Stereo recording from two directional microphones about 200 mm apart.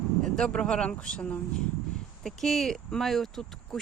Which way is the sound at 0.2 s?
5° left (ahead or behind).